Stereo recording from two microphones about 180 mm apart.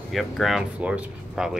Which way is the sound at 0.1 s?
Centre (ahead or behind).